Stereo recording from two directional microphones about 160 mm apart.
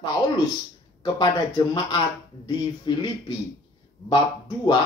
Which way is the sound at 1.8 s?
30° left (ahead or behind).